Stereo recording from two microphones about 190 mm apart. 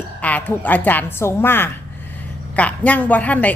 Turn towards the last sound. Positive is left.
turn(degrees=10)  # may be behind; listen again after turning